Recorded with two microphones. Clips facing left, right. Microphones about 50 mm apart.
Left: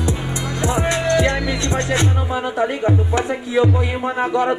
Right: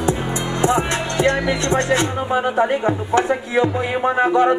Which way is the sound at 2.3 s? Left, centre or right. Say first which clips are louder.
Right 4 dB; right.